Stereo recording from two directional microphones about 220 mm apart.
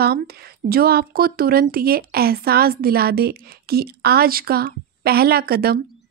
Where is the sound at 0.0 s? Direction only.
45° right (ahead or behind).